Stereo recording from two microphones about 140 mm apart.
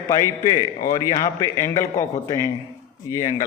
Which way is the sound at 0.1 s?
25° left (ahead or behind).